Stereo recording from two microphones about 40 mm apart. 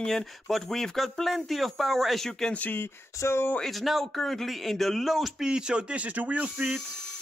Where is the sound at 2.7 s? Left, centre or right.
Left.